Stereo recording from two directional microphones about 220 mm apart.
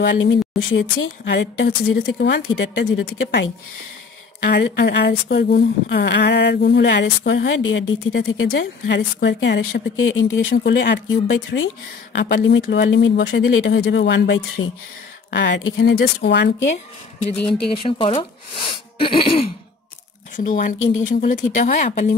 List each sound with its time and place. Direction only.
0.0 s speech: 60° left (ahead or behind)
4.5 s speech: 50° left (ahead or behind)
10.5 s speech: 50° left (ahead or behind)
17.6 s speech: 25° left (ahead or behind)
20.3 s speech: 35° left (ahead or behind)